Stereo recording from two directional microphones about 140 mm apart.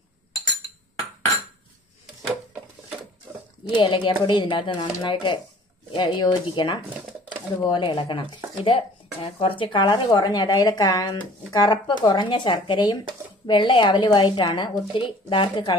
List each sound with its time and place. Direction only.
3.7 s speech: 35° left (ahead or behind)